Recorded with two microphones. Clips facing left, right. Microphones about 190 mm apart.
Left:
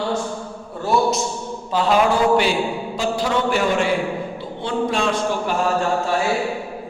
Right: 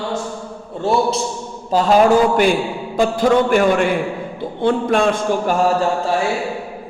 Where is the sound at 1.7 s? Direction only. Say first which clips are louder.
Right 5 dB; 40° right (ahead or behind).